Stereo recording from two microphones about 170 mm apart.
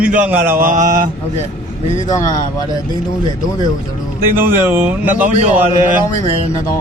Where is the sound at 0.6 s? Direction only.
55° right (ahead or behind).